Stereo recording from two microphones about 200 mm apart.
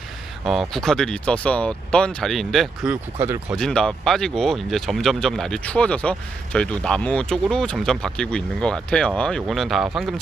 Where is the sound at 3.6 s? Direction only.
5° left (ahead or behind).